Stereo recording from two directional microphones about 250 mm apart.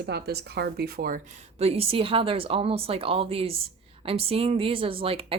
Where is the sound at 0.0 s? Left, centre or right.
Right.